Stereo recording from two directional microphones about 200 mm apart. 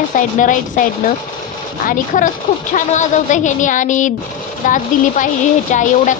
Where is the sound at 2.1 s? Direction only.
40° left (ahead or behind).